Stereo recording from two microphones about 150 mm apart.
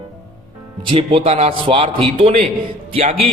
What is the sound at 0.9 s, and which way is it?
A man's voice, 35° right (ahead or behind).